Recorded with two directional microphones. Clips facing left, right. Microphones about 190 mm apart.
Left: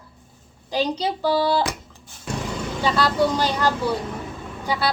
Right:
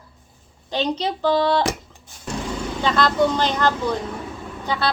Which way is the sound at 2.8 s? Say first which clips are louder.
Right 1 dB; 10° left (ahead or behind).